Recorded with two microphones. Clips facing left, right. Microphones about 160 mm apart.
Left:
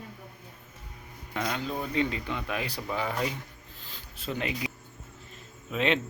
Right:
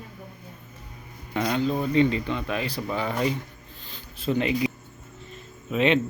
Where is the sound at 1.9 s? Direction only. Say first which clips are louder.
Right 7 dB; 5° left (ahead or behind).